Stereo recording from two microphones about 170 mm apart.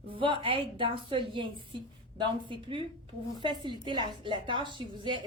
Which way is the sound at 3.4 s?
25° right (ahead or behind).